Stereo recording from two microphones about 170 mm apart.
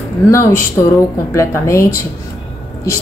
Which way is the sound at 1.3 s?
15° left (ahead or behind).